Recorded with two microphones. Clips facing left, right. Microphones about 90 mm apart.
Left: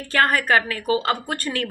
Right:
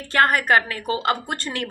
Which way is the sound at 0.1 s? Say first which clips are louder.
Right 1 dB; 20° right (ahead or behind).